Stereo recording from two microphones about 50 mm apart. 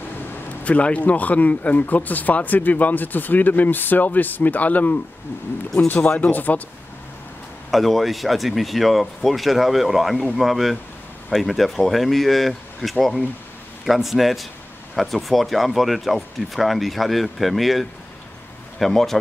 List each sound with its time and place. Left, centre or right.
0.7 s speech: left
5.9 s speech: left
6.2 s speech: left
7.7 s speech: centre